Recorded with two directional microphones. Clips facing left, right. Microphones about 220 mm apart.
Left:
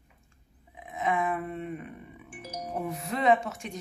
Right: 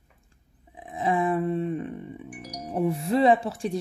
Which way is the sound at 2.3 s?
25° left (ahead or behind).